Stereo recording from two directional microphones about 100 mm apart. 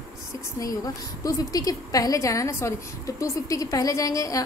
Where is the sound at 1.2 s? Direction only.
35° left (ahead or behind).